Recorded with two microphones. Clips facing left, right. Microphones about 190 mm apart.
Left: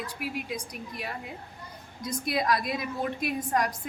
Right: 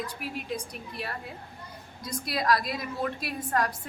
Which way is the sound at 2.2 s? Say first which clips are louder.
Even; 20° left (ahead or behind).